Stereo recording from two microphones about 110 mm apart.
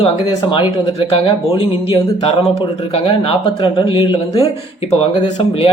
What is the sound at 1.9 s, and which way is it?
Speech, 65° left (ahead or behind).